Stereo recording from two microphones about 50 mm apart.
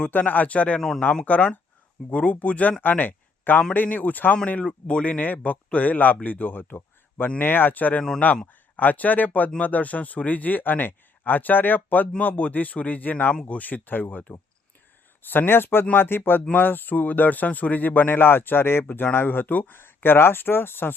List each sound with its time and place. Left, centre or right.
0.1 s speech: left
0.8 s speech: centre
1.3 s speech: left
4.6 s speech: left
13.3 s speech: centre
13.6 s speech: left